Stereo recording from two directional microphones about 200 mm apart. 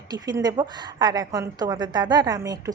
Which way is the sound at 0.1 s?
20° right (ahead or behind).